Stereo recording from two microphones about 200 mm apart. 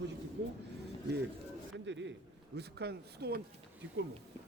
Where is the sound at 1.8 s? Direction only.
65° right (ahead or behind).